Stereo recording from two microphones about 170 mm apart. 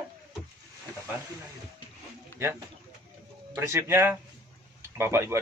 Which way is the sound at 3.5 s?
15° right (ahead or behind).